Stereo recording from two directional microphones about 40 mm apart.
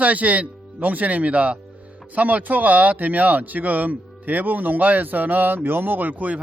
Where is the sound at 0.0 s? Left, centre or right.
Right.